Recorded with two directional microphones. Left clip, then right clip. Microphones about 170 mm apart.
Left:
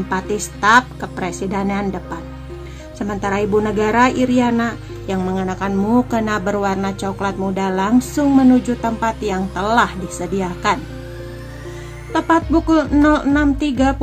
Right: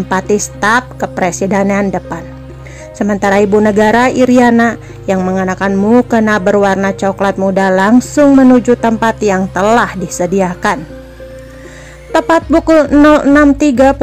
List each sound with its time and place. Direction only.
0.6 s a woman's voice: 40° right (ahead or behind)
12.1 s music: 45° right (ahead or behind)
13.0 s a woman's voice: 40° right (ahead or behind)